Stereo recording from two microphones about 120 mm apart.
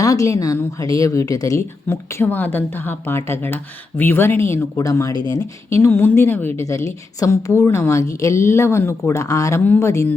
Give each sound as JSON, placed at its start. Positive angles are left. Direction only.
{"t": 0.0, "sound": "speech", "side_deg": 30}
{"t": 5.8, "sound": "speech", "side_deg": 20}